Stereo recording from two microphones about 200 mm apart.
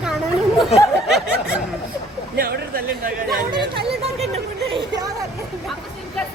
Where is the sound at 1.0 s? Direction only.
5° right (ahead or behind).